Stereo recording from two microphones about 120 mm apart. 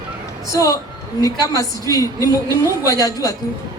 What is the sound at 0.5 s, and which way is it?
A man's voice, 25° left (ahead or behind).